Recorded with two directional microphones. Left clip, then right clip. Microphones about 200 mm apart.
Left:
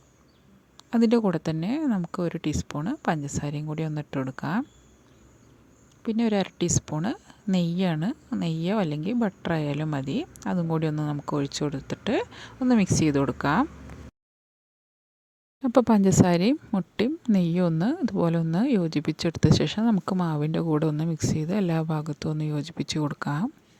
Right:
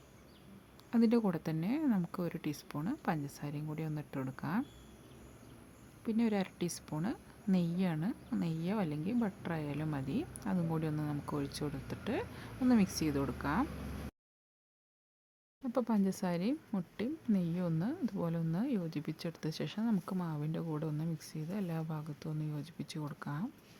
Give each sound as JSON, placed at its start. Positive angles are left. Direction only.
{"t": 0.9, "sound": "a woman's voice", "side_deg": 35}
{"t": 6.0, "sound": "a woman's voice", "side_deg": 30}
{"t": 15.6, "sound": "a woman's voice", "side_deg": 40}